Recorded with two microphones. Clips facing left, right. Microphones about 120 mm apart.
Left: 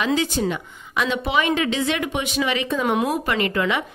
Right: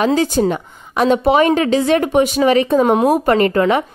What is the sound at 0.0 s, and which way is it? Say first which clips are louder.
A woman's voice: right 7 dB; 40° right (ahead or behind).